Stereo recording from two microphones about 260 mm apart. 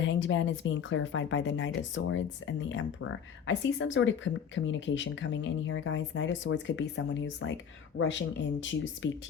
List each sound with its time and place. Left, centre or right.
0.0 s speech: left